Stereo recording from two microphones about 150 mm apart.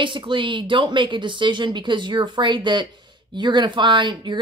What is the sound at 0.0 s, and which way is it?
A woman's voice, 35° right (ahead or behind).